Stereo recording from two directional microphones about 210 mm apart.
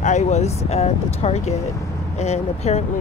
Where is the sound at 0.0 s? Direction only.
35° left (ahead or behind).